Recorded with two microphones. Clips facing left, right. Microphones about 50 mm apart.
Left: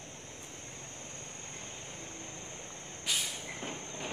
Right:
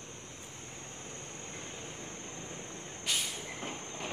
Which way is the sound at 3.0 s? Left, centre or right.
Centre.